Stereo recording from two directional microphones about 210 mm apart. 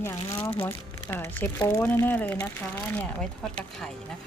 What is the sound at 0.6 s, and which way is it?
Speech, 10° left (ahead or behind).